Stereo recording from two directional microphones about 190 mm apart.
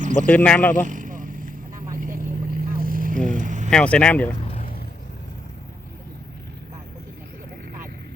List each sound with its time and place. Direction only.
0.0 s a sound: 40° right (ahead or behind)
0.3 s speech: 5° left (ahead or behind)
0.9 s vehicle: 45° right (ahead or behind)
2.0 s boat: 45° right (ahead or behind)
3.2 s vehicle: 40° right (ahead or behind)
3.7 s speech: 5° left (ahead or behind)
4.6 s vehicle: 50° left (ahead or behind)